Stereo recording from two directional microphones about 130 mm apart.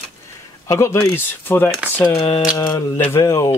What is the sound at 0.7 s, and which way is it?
Speech, 20° left (ahead or behind).